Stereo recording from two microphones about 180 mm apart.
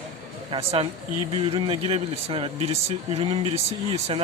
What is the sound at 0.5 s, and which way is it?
Speech, 30° right (ahead or behind).